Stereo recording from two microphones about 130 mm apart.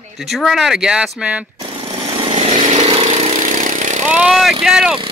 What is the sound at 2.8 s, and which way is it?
Engine, 50° right (ahead or behind).